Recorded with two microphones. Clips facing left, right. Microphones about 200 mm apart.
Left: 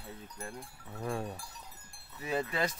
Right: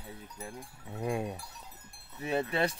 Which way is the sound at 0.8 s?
20° right (ahead or behind).